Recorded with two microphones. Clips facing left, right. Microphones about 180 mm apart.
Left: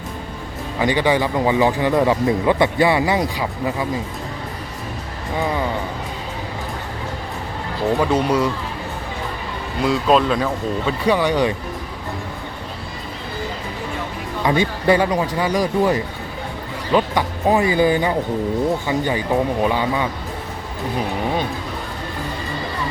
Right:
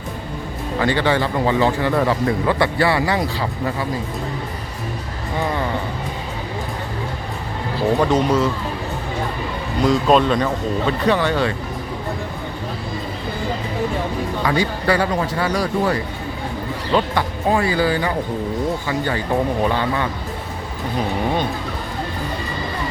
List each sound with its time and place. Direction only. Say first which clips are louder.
0.8 s speech: left 1 dB; 15° left (ahead or behind)
8.0 s speech: even; 10° left (ahead or behind)
9.8 s speech: right 1 dB; centre (ahead or behind)
14.4 s speech: left 3 dB; 20° left (ahead or behind)